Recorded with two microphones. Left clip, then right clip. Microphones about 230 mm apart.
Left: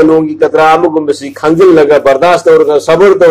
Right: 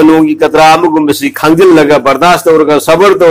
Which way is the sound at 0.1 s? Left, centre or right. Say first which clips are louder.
Right 1 dB; right.